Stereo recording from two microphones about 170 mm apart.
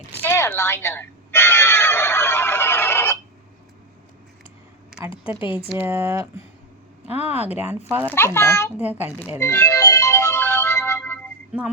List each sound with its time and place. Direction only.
0.1 s music: 15° left (ahead or behind)
5.6 s speech: 10° right (ahead or behind)
7.3 s speech: 40° left (ahead or behind)
7.9 s speech: 10° right (ahead or behind)
8.1 s a child's voice: 15° left (ahead or behind)
8.7 s speech: 10° right (ahead or behind)
9.4 s music: 15° left (ahead or behind)